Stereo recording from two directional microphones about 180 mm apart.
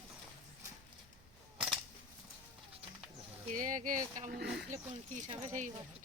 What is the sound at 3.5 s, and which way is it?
Speech, 45° right (ahead or behind).